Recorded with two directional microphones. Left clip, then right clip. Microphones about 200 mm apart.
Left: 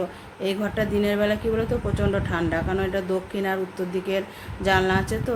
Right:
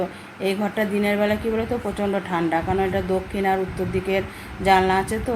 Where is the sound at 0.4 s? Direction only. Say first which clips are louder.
Right 2 dB; 20° left (ahead or behind).